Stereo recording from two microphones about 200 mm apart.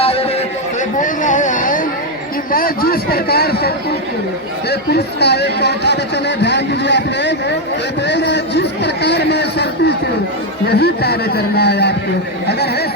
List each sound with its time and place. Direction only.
0.0 s a sound: 30° left (ahead or behind)
2.5 s speech: 45° left (ahead or behind)
4.7 s speech: 55° left (ahead or behind)